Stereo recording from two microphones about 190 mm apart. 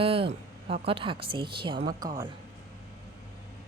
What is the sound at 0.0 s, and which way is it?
A woman's voice, 30° right (ahead or behind).